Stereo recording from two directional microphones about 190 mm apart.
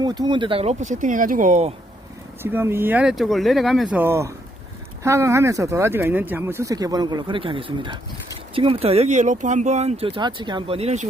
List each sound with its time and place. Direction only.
0.0 s speech: 20° right (ahead or behind); by 1.7 s 40° right (ahead or behind)
2.4 s speech: 10° right (ahead or behind)
3.9 s speech: 10° right (ahead or behind); by 11.1 s 35° right (ahead or behind)